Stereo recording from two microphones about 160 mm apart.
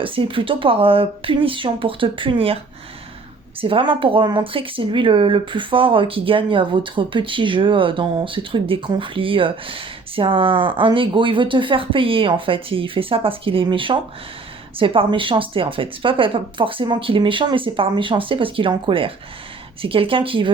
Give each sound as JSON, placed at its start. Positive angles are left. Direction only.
{"t": 0.0, "sound": "speech", "side_deg": -35}
{"t": 3.6, "sound": "speech", "side_deg": -35}